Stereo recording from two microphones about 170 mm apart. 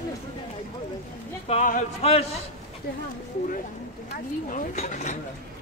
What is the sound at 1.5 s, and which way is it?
Speech, 45° left (ahead or behind).